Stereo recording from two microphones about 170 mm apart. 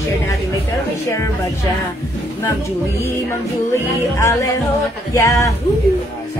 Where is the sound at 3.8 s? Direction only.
15° left (ahead or behind).